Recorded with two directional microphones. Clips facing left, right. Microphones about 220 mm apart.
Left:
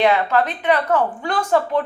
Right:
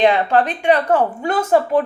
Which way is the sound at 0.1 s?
30° right (ahead or behind).